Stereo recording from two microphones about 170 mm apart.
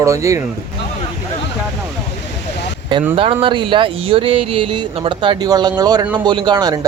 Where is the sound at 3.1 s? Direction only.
30° right (ahead or behind).